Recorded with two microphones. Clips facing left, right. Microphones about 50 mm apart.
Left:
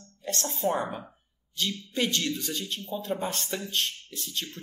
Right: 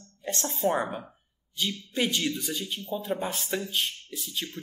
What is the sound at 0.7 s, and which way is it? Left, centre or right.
A woman's voice, centre.